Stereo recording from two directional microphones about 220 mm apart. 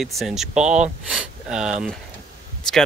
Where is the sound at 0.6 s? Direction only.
30° right (ahead or behind).